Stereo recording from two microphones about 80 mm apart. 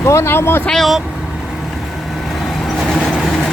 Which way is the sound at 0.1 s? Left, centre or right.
Left.